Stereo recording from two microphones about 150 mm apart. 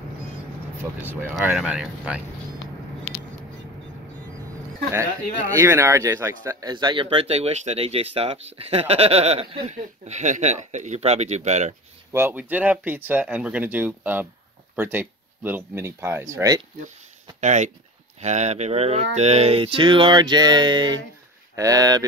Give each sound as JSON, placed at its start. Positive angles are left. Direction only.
{"t": 1.4, "sound": "speech", "side_deg": -10}
{"t": 5.6, "sound": "speech", "side_deg": -15}
{"t": 12.1, "sound": "speech", "side_deg": -15}
{"t": 17.4, "sound": "speech", "side_deg": -55}